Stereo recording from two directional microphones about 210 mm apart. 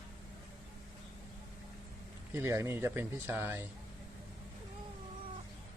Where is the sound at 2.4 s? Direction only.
15° right (ahead or behind).